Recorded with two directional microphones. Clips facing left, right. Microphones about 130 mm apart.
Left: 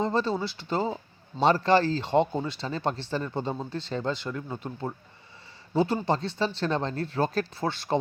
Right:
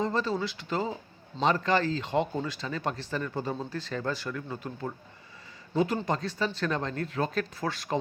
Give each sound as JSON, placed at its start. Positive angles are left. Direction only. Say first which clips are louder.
{"t": 0.0, "sound": "speech", "louder": "left 2 dB", "side_deg": 30}